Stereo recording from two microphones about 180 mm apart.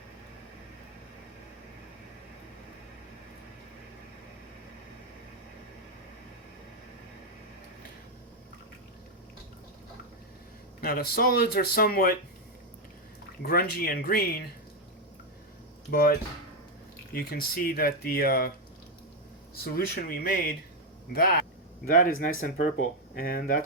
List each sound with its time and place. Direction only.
10.8 s speech: 55° left (ahead or behind)
13.4 s speech: 55° left (ahead or behind)
15.9 s speech: 55° left (ahead or behind)
17.2 s speech: 55° left (ahead or behind)
19.5 s speech: 55° left (ahead or behind)